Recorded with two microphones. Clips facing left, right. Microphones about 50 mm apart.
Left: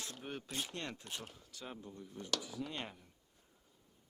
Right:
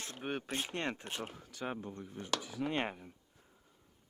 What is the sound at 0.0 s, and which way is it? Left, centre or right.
Speech, right.